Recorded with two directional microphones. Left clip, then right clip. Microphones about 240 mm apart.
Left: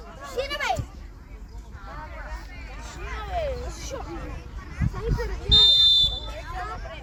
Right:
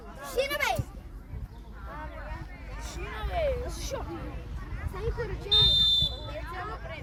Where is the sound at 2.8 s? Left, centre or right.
Right.